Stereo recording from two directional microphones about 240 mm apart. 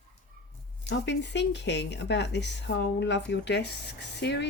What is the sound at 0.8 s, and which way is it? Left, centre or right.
Speech, left.